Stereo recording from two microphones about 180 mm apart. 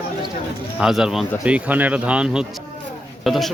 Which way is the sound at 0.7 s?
5° right (ahead or behind).